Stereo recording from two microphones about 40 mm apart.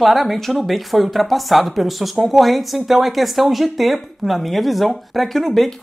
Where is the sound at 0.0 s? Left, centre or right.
Centre.